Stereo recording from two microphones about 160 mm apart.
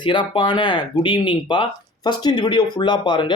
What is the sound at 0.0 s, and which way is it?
Speech, 30° left (ahead or behind).